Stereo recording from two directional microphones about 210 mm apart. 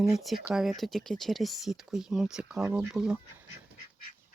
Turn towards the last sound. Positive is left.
turn(degrees=-5)  # may be behind; listen again after turning